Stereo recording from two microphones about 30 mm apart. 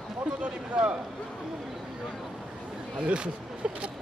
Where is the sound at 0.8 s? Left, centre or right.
Right.